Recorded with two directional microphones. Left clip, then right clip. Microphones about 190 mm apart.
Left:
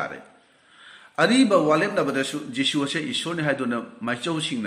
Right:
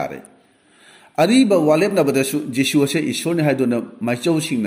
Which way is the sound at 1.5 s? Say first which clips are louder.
Right 4 dB; 45° right (ahead or behind).